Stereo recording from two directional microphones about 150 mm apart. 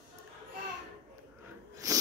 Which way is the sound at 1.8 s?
25° right (ahead or behind).